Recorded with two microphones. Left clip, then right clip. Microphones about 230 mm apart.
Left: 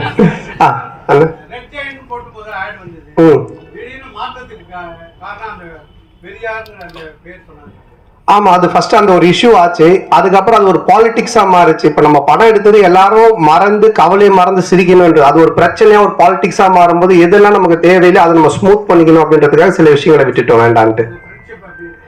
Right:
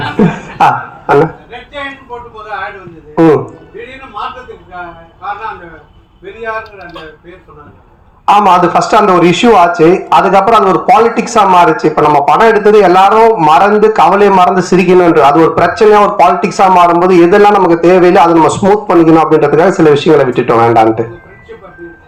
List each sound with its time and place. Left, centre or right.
0.6 s a sound: left
3.2 s a man's voice: left
8.3 s speech: left